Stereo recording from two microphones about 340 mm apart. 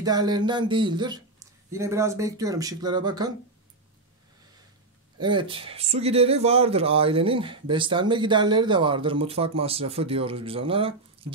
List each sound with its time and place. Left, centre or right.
0.0 s speech: centre
5.2 s speech: centre